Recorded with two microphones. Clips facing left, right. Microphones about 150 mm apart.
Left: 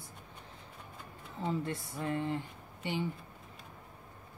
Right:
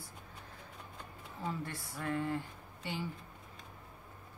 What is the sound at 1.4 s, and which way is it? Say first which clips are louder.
Speech: left 5 dB; 25° left (ahead or behind).